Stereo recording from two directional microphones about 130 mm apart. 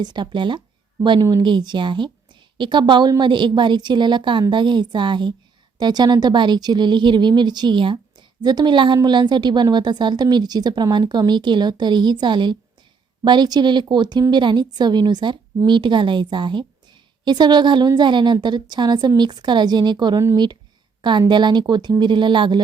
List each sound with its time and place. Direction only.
0.0 s speech: 35° right (ahead or behind)